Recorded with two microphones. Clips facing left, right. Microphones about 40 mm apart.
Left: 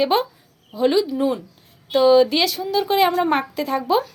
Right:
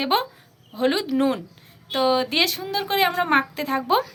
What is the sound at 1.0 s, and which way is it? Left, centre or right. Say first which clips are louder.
Speech: even; right.